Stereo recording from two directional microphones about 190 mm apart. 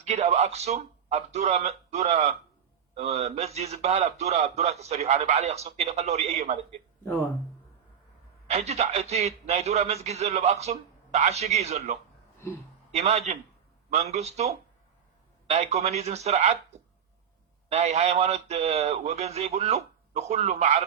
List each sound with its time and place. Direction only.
0.0 s a man's voice: 35° right (ahead or behind)
8.4 s a man's voice: 35° right (ahead or behind)
17.7 s a man's voice: 35° right (ahead or behind)